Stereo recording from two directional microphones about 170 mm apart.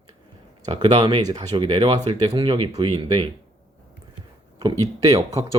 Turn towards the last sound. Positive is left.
turn(degrees=-20)  # may be behind; listen again after turning